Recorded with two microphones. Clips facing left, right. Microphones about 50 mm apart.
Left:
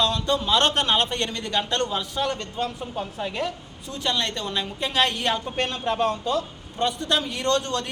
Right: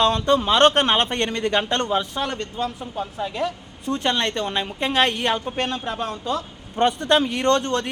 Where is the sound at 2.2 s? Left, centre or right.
Centre.